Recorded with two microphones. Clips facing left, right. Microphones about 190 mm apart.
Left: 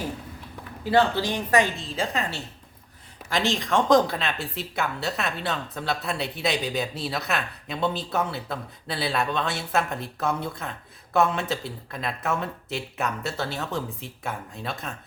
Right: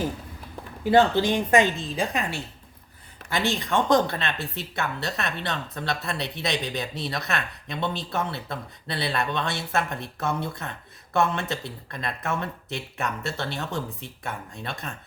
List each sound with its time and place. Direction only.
0.9 s a woman's voice: 20° right (ahead or behind)
3.2 s speech: centre (ahead or behind)